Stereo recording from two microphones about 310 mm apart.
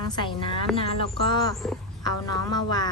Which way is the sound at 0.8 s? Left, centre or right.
Centre.